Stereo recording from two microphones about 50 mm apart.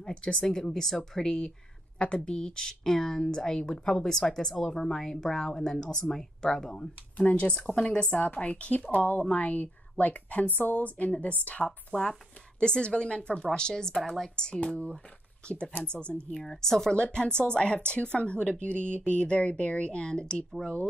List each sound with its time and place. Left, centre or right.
0.0 s speech: centre
8.1 s speech: left
8.9 s a woman's voice: left
11.9 s speech: centre
16.3 s speech: centre